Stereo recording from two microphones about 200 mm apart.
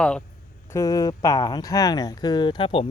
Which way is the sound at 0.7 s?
15° left (ahead or behind).